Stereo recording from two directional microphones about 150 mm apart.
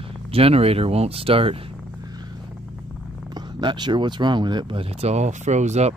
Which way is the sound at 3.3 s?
30° right (ahead or behind).